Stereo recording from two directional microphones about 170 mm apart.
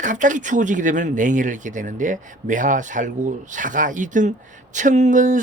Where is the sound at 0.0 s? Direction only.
50° right (ahead or behind).